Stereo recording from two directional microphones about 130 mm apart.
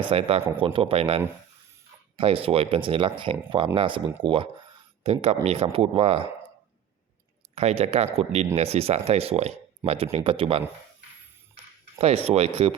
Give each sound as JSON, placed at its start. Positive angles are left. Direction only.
{"t": 0.1, "sound": "speech", "side_deg": -50}
{"t": 5.0, "sound": "speech", "side_deg": -55}
{"t": 7.5, "sound": "speech", "side_deg": -55}
{"t": 11.9, "sound": "speech", "side_deg": -50}